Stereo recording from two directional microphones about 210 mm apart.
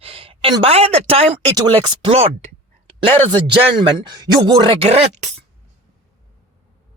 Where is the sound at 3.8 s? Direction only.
20° right (ahead or behind).